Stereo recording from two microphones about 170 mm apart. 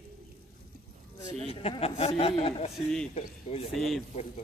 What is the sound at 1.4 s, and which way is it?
Speech, 35° left (ahead or behind).